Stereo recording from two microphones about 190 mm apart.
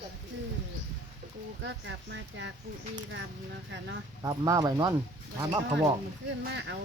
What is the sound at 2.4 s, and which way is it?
Speech, 75° right (ahead or behind).